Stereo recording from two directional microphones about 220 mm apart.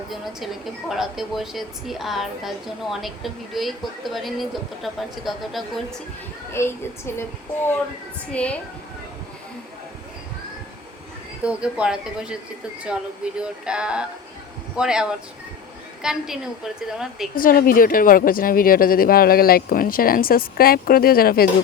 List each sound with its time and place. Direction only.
0.1 s a woman's voice: centre (ahead or behind)
6.5 s a woman's voice: 10° left (ahead or behind)
11.4 s a woman's voice: 5° right (ahead or behind)
13.4 s a woman's voice: 5° right (ahead or behind)
17.3 s speech: 40° left (ahead or behind)